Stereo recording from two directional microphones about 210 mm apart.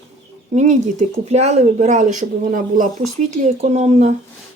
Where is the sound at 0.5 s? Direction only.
35° right (ahead or behind).